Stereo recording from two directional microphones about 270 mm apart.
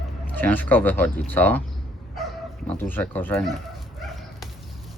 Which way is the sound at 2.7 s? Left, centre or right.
Centre.